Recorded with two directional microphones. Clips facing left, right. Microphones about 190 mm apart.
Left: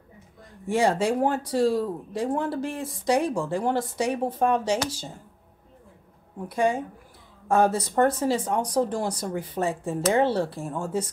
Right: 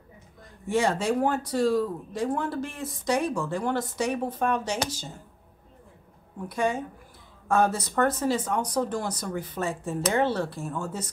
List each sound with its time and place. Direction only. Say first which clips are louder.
0.7 s speech: left 2 dB; 30° left (ahead or behind)
6.5 s speech: left 3 dB; 30° left (ahead or behind)